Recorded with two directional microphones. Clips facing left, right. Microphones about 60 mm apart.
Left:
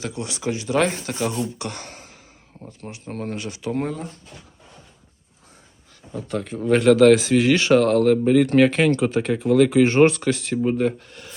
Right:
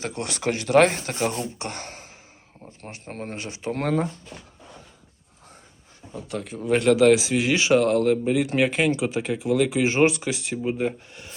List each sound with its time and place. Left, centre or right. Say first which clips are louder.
0.0 s speech: even; right
1.5 s speech: left 1 dB; right
6.1 s speech: left 4 dB; centre